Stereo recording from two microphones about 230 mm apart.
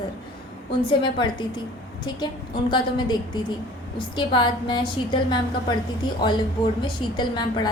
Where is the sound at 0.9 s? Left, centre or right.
Left.